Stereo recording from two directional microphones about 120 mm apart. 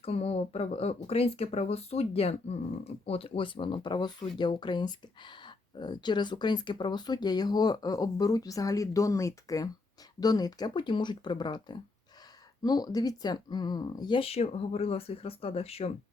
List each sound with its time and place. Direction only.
0.0 s speech: 55° left (ahead or behind); by 14.2 s 35° left (ahead or behind)
14.2 s speech: 55° left (ahead or behind)